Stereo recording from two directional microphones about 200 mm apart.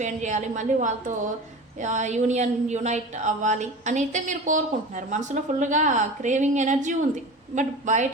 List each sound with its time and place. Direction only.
0.0 s a woman's voice: 35° right (ahead or behind)